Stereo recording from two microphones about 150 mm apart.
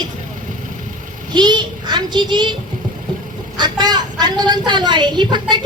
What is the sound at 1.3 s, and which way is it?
A child's voice, 30° right (ahead or behind).